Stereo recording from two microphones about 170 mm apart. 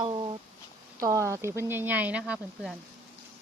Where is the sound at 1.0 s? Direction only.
20° right (ahead or behind).